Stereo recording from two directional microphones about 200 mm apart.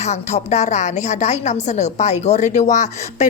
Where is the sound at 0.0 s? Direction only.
35° left (ahead or behind).